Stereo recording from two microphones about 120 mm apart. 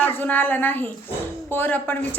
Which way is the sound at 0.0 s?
15° left (ahead or behind).